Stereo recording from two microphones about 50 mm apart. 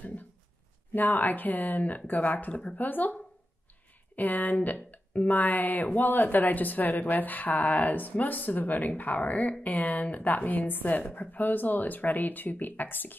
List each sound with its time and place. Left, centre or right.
0.9 s a woman's voice: left
4.2 s a woman's voice: left